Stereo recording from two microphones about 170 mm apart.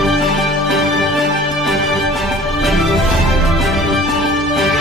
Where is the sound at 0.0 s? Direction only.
Centre (ahead or behind).